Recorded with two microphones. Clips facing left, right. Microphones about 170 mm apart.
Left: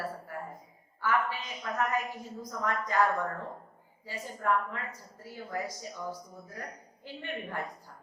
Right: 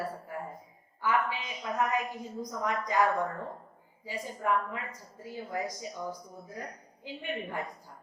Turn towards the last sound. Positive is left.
turn(degrees=-15)  # may be behind; listen again after turning